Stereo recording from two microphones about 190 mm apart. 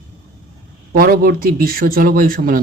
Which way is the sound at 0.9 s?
50° right (ahead or behind).